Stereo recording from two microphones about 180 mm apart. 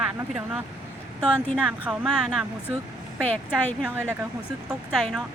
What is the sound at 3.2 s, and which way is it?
Speech, 10° left (ahead or behind).